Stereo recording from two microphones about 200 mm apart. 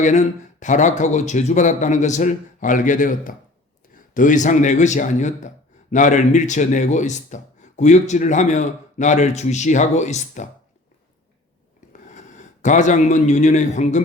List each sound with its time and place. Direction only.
0.0 s speech: 35° left (ahead or behind)
11.9 s a man's voice: 35° left (ahead or behind)